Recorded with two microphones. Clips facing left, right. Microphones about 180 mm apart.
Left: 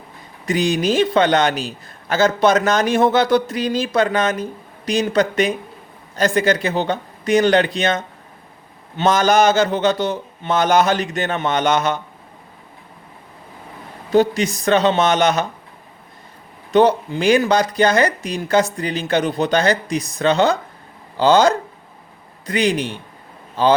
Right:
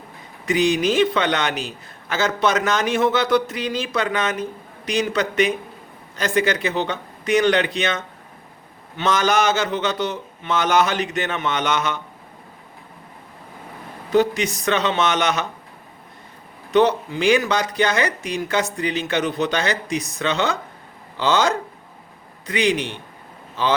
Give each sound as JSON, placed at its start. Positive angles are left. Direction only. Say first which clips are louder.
{"t": 0.4, "sound": "a man's voice", "louder": "even", "side_deg": 35}
{"t": 14.1, "sound": "a man's voice", "louder": "left 3 dB", "side_deg": 30}
{"t": 16.7, "sound": "a man's voice", "louder": "left 3 dB", "side_deg": 35}